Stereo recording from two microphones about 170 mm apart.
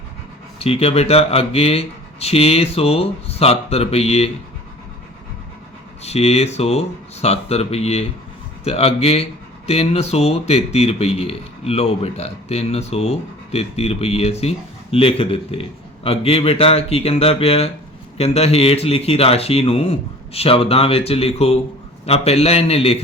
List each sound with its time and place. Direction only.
0.6 s speech: 35° left (ahead or behind)
6.0 s speech: 40° left (ahead or behind)